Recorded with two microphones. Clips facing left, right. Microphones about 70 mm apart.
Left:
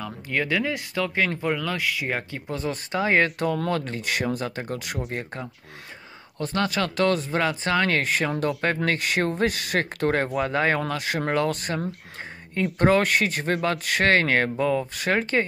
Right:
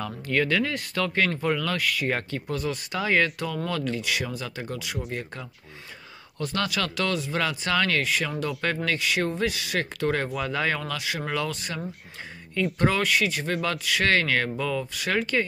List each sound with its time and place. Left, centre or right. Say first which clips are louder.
0.0 s speech: right 2 dB; centre
2.4 s speech: even; left
3.3 s speech: left 5 dB; left
6.4 s speech: left 3 dB; left